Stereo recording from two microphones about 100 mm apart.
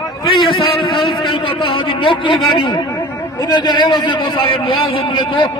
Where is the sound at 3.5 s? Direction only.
45° left (ahead or behind).